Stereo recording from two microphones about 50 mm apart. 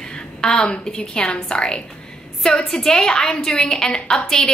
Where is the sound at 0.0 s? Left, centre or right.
Centre.